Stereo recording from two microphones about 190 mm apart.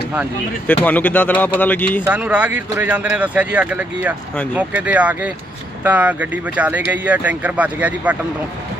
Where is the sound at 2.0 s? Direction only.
5° right (ahead or behind).